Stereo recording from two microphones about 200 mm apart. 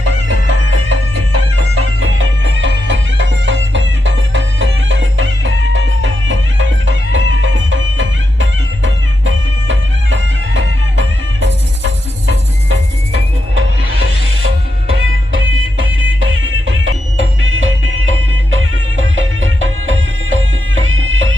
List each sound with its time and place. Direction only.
1.8 s music: 80° right; by 11.9 s 65° right (ahead or behind)
13.6 s music: 70° right (ahead or behind)